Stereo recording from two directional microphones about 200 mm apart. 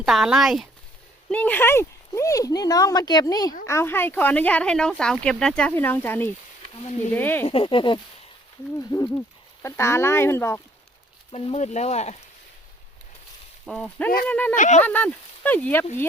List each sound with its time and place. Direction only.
0.0 s speech: centre (ahead or behind)
7.4 s speech: 25° left (ahead or behind)
11.3 s speech: 30° left (ahead or behind)
13.7 s speech: 5° left (ahead or behind)
14.5 s speech: 40° left (ahead or behind)
14.8 s speech: 10° left (ahead or behind)